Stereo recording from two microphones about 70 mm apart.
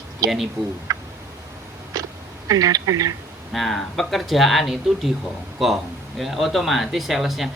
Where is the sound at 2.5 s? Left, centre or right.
Right.